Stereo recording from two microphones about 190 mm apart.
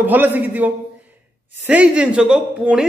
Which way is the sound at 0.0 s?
10° right (ahead or behind).